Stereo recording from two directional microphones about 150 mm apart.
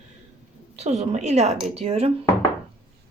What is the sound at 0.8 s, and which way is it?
Speech, 50° right (ahead or behind).